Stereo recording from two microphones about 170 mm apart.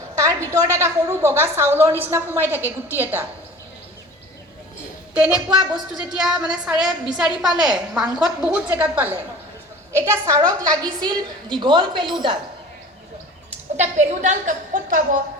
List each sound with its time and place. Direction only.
0.2 s a woman's voice: 20° right (ahead or behind)
5.1 s a woman's voice: 5° right (ahead or behind); by 12.4 s 30° right (ahead or behind)
13.7 s a woman's voice: 45° right (ahead or behind)